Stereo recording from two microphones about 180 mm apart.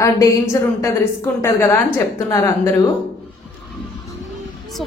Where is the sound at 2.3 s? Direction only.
15° left (ahead or behind).